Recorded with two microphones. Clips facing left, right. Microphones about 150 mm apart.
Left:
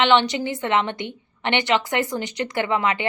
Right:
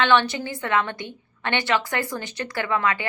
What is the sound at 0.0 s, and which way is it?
A woman's voice, 20° left (ahead or behind).